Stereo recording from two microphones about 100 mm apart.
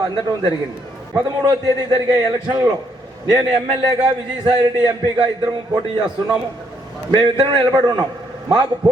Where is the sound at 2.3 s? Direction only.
40° right (ahead or behind).